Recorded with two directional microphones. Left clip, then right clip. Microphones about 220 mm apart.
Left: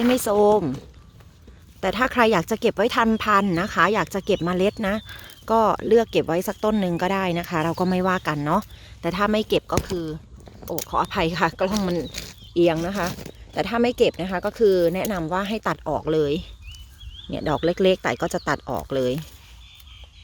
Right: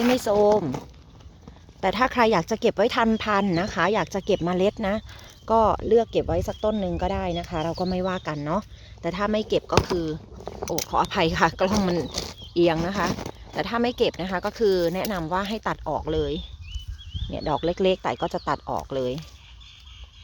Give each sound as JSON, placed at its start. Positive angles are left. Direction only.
{"t": 0.1, "sound": "speech", "side_deg": 10}
{"t": 1.8, "sound": "speech", "side_deg": 5}
{"t": 9.8, "sound": "speech", "side_deg": -5}